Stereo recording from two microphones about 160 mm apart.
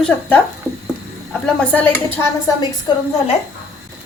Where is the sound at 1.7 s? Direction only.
10° left (ahead or behind).